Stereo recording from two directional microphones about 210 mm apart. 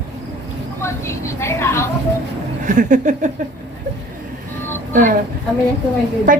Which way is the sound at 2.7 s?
35° right (ahead or behind).